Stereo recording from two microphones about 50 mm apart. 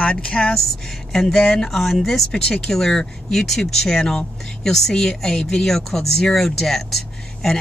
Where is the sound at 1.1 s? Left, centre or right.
Centre.